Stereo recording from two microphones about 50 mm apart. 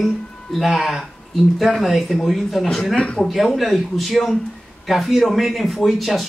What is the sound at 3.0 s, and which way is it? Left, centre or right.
Speech, left.